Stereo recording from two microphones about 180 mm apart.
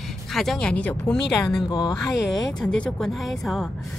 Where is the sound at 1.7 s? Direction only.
20° left (ahead or behind).